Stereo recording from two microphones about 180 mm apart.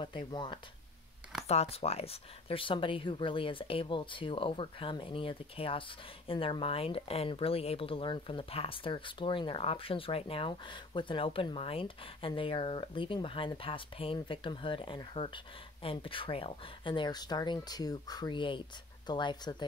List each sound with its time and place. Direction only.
0.0 s speech: 25° left (ahead or behind)
1.5 s speech: 35° left (ahead or behind)